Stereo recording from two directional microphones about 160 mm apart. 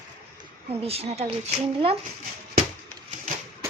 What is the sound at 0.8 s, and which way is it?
Speech, 40° right (ahead or behind).